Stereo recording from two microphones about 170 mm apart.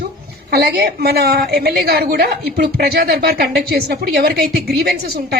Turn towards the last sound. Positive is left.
turn(degrees=-65)  # may be behind; listen again after turning